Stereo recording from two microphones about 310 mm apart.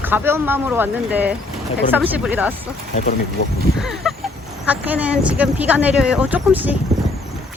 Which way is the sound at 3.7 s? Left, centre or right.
Centre.